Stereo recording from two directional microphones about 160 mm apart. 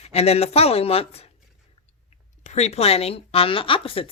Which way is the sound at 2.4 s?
45° left (ahead or behind).